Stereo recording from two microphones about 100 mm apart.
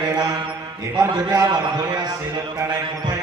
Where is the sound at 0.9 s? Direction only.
40° right (ahead or behind).